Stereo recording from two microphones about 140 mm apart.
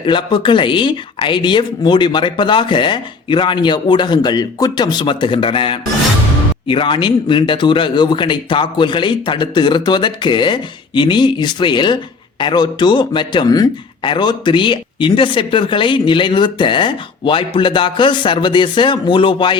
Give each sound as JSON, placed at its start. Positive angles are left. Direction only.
{"t": 0.0, "sound": "speech", "side_deg": 35}